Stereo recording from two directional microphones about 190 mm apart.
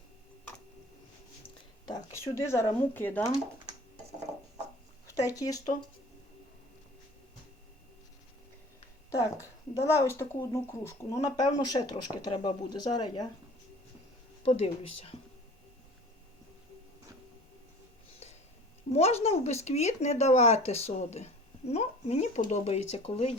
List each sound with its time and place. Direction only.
1.9 s speech: 15° left (ahead or behind)
5.0 s speech: 20° left (ahead or behind)
9.0 s a woman's voice: 15° left (ahead or behind)
14.4 s speech: 35° left (ahead or behind)
18.9 s speech: 35° left (ahead or behind)